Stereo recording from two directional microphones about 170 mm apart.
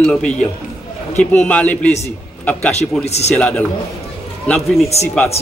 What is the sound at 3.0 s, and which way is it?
Speech, 40° left (ahead or behind).